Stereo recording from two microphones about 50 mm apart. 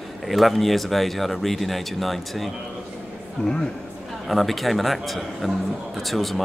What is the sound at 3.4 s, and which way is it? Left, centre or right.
Speech, centre.